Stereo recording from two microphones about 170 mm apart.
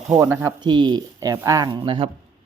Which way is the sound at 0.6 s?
25° right (ahead or behind).